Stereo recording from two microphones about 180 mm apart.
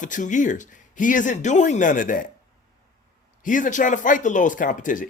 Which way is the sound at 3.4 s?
45° left (ahead or behind).